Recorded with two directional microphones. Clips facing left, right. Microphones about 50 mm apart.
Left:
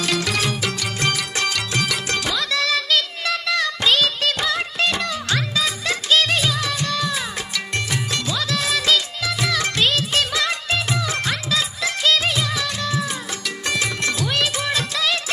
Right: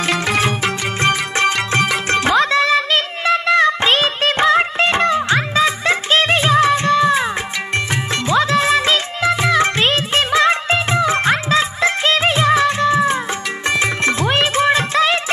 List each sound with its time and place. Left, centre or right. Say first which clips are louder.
0.0 s music: right 5 dB; right